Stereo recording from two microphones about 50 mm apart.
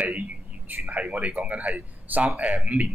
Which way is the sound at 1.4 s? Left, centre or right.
Right.